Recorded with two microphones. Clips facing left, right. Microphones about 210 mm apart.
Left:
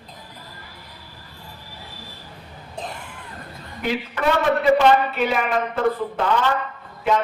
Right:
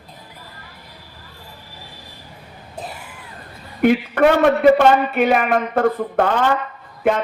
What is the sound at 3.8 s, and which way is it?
Speech, 55° right (ahead or behind).